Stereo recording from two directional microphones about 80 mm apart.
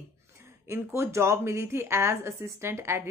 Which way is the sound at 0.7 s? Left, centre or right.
Right.